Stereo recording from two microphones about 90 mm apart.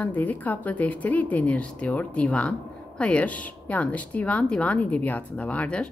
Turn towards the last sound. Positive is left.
turn(degrees=15)  # may be behind; listen again after turning